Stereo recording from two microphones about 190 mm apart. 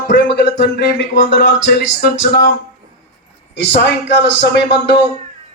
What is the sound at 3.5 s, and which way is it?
Speech, 65° left (ahead or behind).